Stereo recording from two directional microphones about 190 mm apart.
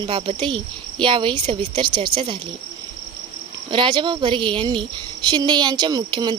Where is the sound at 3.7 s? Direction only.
25° right (ahead or behind).